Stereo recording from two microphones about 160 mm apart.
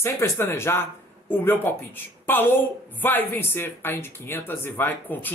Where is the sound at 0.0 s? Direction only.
15° left (ahead or behind).